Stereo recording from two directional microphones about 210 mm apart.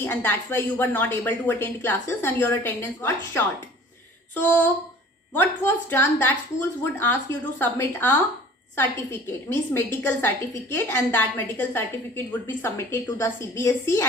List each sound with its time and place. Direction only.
0.0 s a woman's voice: 10° left (ahead or behind)